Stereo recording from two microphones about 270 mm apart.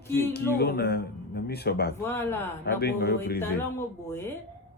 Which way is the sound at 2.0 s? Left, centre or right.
Centre.